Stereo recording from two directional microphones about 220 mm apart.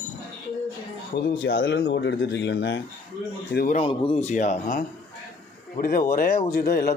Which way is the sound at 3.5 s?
40° left (ahead or behind).